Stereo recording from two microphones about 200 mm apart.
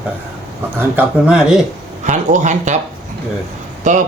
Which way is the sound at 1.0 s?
5° right (ahead or behind).